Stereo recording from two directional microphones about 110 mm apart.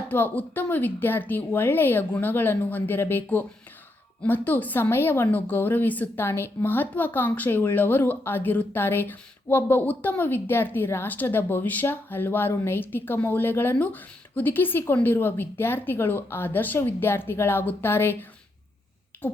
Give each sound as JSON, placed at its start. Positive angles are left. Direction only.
{"t": 0.1, "sound": "a woman's voice", "side_deg": 15}